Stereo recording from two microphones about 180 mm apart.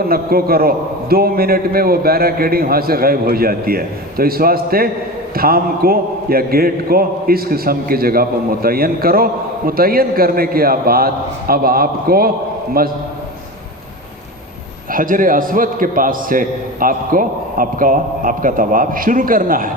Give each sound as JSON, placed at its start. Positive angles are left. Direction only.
{"t": 0.0, "sound": "a man's voice", "side_deg": -55}
{"t": 14.9, "sound": "a man's voice", "side_deg": -50}